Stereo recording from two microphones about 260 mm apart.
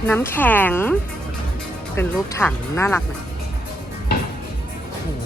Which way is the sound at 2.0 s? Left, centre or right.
Centre.